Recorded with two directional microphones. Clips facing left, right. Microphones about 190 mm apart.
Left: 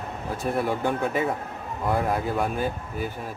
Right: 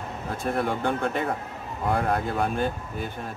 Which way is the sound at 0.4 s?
10° left (ahead or behind).